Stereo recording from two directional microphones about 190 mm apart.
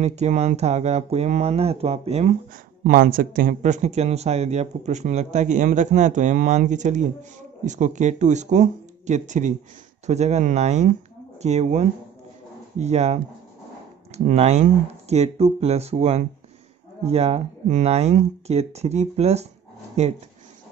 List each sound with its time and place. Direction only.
0.0 s speech: 35° right (ahead or behind)
2.8 s speech: 50° right (ahead or behind)